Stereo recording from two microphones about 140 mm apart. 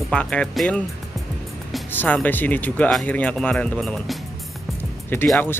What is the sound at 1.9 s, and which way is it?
Speech, 15° left (ahead or behind).